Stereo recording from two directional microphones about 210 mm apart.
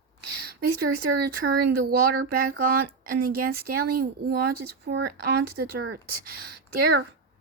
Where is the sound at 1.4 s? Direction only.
60° right (ahead or behind).